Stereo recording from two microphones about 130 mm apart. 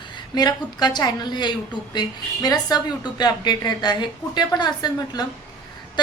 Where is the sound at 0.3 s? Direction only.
30° left (ahead or behind).